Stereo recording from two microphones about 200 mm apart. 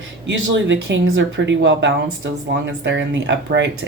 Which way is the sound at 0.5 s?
65° right (ahead or behind).